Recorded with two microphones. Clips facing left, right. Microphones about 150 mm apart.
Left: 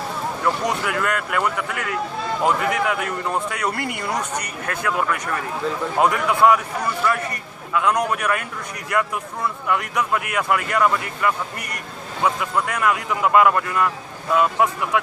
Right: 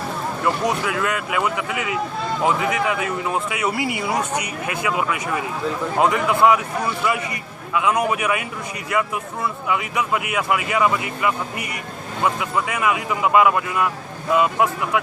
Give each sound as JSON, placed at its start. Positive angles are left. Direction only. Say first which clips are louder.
{"t": 0.4, "sound": "a man's voice", "louder": "right 1 dB", "side_deg": 0}